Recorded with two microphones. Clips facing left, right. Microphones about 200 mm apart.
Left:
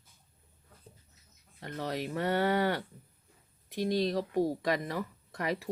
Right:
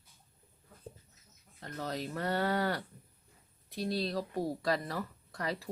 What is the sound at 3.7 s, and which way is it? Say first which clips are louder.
Speech: left 4 dB; 15° left (ahead or behind).